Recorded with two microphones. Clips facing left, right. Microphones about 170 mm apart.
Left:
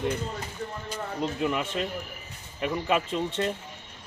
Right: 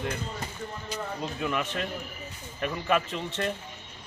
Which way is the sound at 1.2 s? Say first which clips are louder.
Left 4 dB; 20° left (ahead or behind).